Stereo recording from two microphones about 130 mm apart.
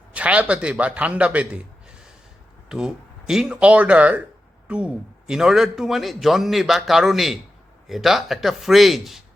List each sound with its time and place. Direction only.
0.1 s a man's voice: 10° right (ahead or behind)
2.6 s a man's voice: 5° right (ahead or behind)